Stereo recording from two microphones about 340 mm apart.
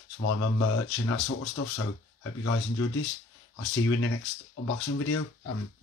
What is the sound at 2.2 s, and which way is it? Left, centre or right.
Speech, left.